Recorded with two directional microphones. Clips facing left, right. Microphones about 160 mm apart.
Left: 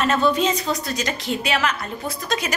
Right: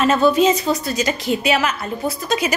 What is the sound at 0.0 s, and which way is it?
A woman's voice, 5° right (ahead or behind).